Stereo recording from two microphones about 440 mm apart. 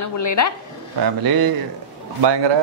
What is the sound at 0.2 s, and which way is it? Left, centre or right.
Speech, left.